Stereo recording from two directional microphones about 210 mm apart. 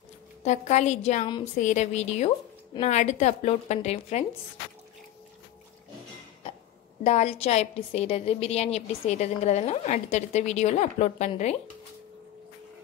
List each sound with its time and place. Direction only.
0.4 s a woman's voice: 35° left (ahead or behind)
7.0 s a woman's voice: 30° left (ahead or behind)